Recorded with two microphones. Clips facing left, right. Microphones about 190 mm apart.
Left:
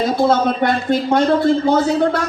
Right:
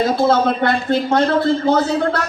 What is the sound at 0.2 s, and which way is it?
Speech, 15° left (ahead or behind).